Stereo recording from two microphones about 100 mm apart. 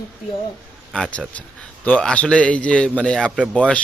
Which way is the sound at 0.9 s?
5° left (ahead or behind).